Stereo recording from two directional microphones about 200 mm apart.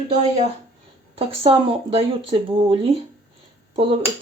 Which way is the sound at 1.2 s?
25° right (ahead or behind).